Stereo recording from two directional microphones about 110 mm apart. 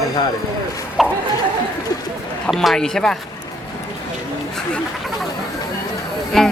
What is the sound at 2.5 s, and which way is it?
Speech, centre (ahead or behind).